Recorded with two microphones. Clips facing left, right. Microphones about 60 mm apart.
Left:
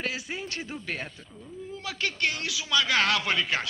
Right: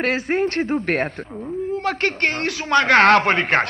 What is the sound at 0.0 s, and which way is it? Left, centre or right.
A man's voice, right.